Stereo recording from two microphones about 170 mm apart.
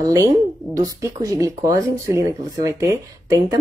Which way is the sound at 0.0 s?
20° right (ahead or behind).